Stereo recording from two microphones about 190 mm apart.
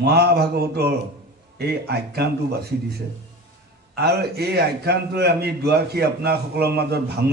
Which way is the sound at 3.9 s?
60° right (ahead or behind).